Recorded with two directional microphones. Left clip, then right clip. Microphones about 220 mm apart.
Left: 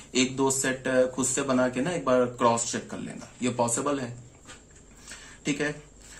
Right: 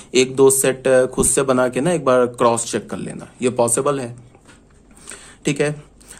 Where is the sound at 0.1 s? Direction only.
50° right (ahead or behind).